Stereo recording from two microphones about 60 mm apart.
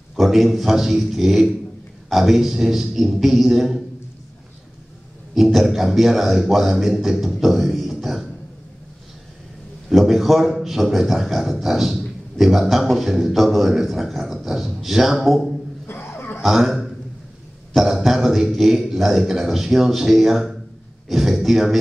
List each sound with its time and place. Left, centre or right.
0.1 s a man's voice: centre
5.3 s a man's voice: centre
9.8 s a man's voice: centre
15.9 s chuckle: left
16.4 s a man's voice: centre